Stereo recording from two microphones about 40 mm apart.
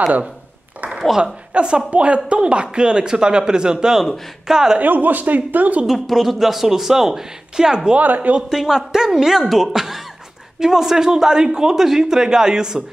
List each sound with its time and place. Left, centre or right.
1.1 s a man's voice: right
4.7 s speech: right
5.9 s a man's voice: centre
8.0 s speech: right
8.5 s a man's voice: centre